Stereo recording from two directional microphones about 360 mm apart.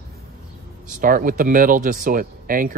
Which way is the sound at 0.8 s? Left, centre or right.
Right.